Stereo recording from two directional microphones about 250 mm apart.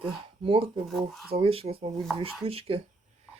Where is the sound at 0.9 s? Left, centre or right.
Centre.